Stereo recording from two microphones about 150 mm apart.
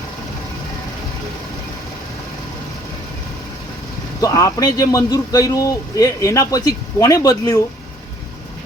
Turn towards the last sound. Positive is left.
turn(degrees=25)  # may be behind; listen again after turning